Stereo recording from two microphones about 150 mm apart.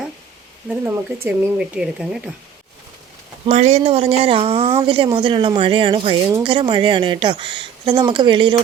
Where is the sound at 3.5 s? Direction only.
50° right (ahead or behind).